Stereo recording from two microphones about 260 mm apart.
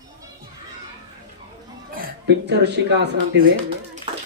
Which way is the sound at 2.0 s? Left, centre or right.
Right.